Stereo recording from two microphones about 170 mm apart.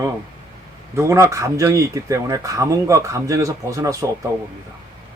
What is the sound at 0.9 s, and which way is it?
Speech, 15° right (ahead or behind).